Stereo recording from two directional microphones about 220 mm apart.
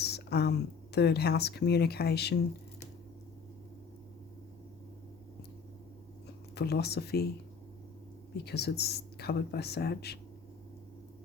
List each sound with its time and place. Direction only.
0.0 s a sound: 50° left (ahead or behind)
0.9 s speech: 50° left (ahead or behind)
6.5 s speech: 45° left (ahead or behind)
8.4 s speech: 50° left (ahead or behind)